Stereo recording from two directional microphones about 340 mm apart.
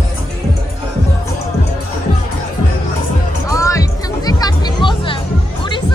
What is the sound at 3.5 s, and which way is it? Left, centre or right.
Music, centre.